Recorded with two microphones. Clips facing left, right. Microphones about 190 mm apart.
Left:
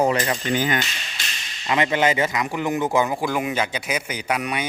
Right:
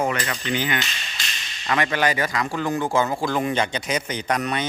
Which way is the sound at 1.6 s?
20° left (ahead or behind).